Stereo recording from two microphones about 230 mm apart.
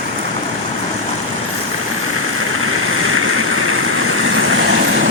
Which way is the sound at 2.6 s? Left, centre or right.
Right.